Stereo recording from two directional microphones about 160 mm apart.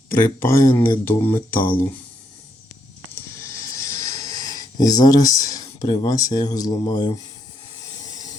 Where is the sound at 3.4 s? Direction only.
20° left (ahead or behind).